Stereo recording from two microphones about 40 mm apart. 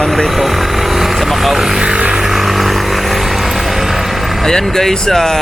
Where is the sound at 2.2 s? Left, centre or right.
Centre.